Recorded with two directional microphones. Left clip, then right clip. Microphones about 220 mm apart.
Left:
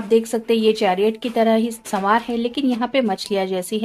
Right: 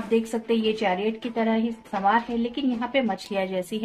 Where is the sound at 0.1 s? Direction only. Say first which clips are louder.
Left 7 dB; 50° left (ahead or behind).